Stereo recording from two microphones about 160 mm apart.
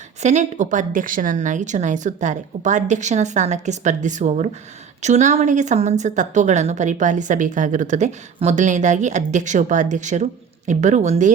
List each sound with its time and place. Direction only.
0.2 s a woman's voice: 45° right (ahead or behind)